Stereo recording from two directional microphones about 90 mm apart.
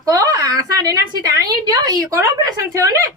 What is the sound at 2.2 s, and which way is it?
Speech, 35° right (ahead or behind).